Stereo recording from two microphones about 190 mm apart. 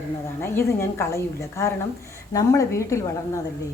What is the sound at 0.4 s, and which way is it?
A woman's voice, 10° left (ahead or behind).